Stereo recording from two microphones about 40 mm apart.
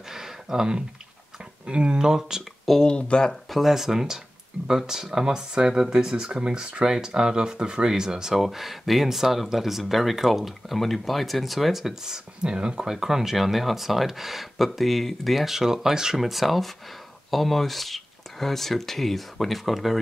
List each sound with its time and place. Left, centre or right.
0.1 s a sound: centre
1.7 s speech: right
2.7 s speech: centre
3.1 s speech: left
3.4 s speech: centre
8.4 s speech: centre
16.2 s speech: centre